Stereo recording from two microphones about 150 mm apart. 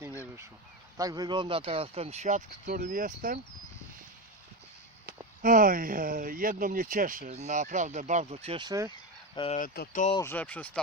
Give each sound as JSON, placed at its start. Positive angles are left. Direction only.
{"t": 0.9, "sound": "speech", "side_deg": -25}
{"t": 2.6, "sound": "speech", "side_deg": -70}
{"t": 5.4, "sound": "speech", "side_deg": -65}
{"t": 7.3, "sound": "speech", "side_deg": -50}
{"t": 8.5, "sound": "speech", "side_deg": -25}
{"t": 9.3, "sound": "speech", "side_deg": 35}
{"t": 9.6, "sound": "speech", "side_deg": 85}
{"t": 10.2, "sound": "speech", "side_deg": 15}